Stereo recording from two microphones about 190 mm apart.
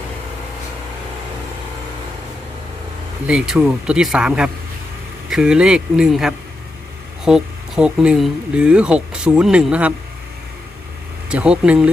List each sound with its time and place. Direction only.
3.2 s speech: 5° right (ahead or behind)
11.3 s speech: 5° right (ahead or behind)